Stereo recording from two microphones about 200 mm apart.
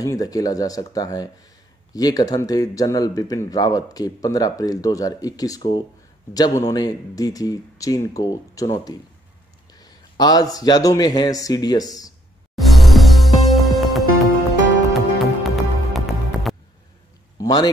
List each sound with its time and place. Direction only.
0.0 s a man's voice: 20° left (ahead or behind)
12.5 s music: centre (ahead or behind)
17.4 s a sound: 20° left (ahead or behind)